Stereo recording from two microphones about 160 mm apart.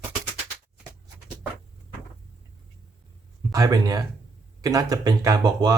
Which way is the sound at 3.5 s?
20° right (ahead or behind).